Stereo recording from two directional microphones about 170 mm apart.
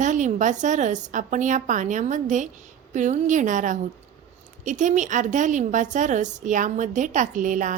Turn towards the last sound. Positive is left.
turn(degrees=-50)  # may be behind; listen again after turning